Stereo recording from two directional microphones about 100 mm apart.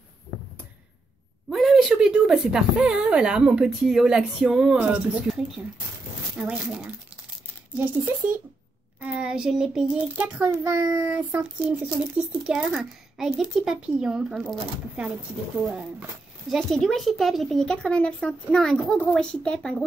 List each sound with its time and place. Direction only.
1.5 s a woman's voice: centre (ahead or behind)
6.5 s a woman's voice: 5° right (ahead or behind)
10.1 s a woman's voice: 15° right (ahead or behind)
10.6 s speech: 30° right (ahead or behind)
11.1 s a woman's voice: 15° right (ahead or behind)
16.4 s speech: 5° left (ahead or behind)